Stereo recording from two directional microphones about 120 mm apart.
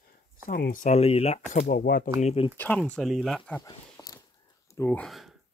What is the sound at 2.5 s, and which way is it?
Speech, 10° left (ahead or behind).